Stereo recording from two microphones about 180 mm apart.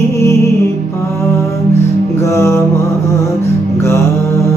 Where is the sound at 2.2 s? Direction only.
15° left (ahead or behind).